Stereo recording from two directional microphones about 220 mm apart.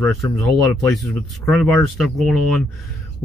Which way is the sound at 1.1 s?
Centre (ahead or behind).